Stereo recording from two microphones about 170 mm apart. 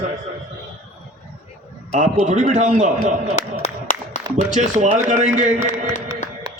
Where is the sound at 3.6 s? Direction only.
45° left (ahead or behind).